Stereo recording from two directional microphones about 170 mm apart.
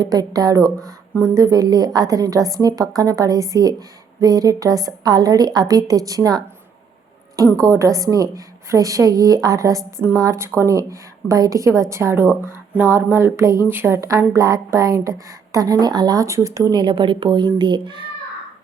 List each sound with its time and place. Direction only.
0.0 s a woman's voice: 20° right (ahead or behind)
7.6 s a woman's voice: 20° right (ahead or behind)